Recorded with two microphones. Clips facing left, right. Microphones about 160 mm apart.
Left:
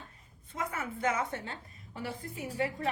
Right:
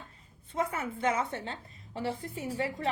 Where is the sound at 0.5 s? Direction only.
30° right (ahead or behind).